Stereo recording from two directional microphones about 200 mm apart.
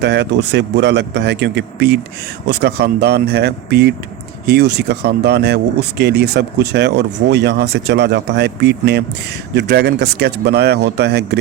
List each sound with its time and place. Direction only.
0.0 s speech: 55° right (ahead or behind)